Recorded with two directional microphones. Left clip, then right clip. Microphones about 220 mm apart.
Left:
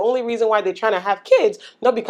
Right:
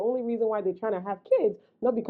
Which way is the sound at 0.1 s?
10° left (ahead or behind).